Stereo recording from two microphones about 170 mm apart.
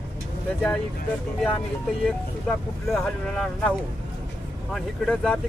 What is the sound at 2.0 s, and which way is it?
Speech, 5° left (ahead or behind).